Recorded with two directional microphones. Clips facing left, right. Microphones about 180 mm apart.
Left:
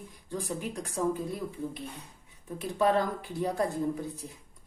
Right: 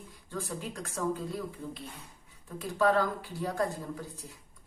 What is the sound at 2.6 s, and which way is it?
Speech, 20° left (ahead or behind).